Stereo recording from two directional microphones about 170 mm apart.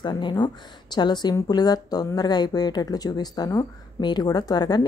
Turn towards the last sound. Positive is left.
turn(degrees=25)  # may be behind; listen again after turning